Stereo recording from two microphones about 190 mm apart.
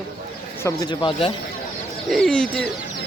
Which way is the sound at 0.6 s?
20° left (ahead or behind).